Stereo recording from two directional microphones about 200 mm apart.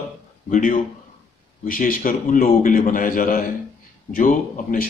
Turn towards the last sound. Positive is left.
turn(degrees=40)  # may be behind; listen again after turning